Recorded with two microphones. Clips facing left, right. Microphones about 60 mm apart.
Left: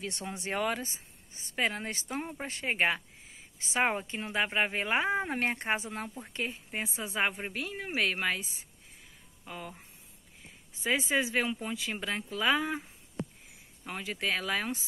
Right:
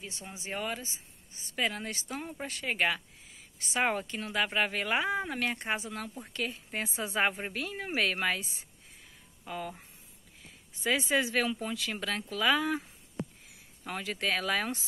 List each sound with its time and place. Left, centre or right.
0.0 s speech: left
6.7 s speech: centre
9.5 s speech: centre
11.0 s speech: centre
13.8 s speech: centre